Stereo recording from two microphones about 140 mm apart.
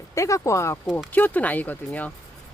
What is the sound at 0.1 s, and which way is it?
Speech, 20° left (ahead or behind).